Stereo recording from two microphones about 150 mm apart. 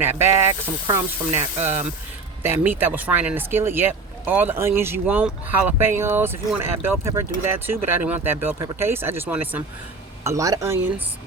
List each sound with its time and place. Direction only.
0.0 s speech: 15° right (ahead or behind)
10.2 s speech: 20° right (ahead or behind)